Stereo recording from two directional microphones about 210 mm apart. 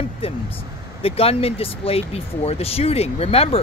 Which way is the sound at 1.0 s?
25° left (ahead or behind).